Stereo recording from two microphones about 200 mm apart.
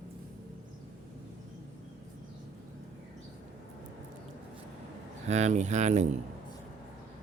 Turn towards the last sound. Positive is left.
turn(degrees=-35)  # may be behind; listen again after turning